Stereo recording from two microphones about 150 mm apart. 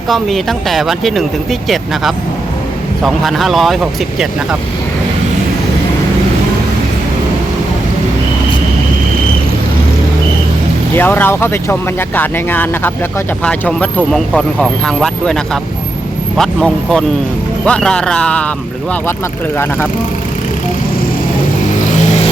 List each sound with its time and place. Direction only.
0.1 s speech: centre (ahead or behind)
10.9 s speech: 15° left (ahead or behind)
16.4 s speech: 5° left (ahead or behind)